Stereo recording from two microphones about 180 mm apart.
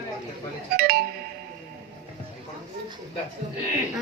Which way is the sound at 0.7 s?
60° right (ahead or behind).